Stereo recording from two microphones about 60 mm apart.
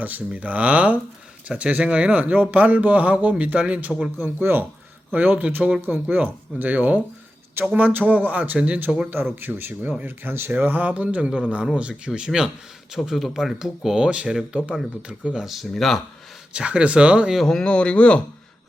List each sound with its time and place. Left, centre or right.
0.3 s speech: right
4.2 s speech: right; by 12.5 s centre
13.0 s speech: centre
15.4 s speech: centre
16.5 s speech: centre
17.3 s speech: centre